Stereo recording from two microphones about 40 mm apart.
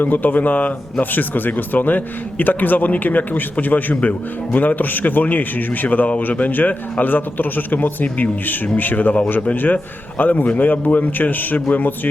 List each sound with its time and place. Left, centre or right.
0.0 s a man's voice: left
10.2 s a man's voice: left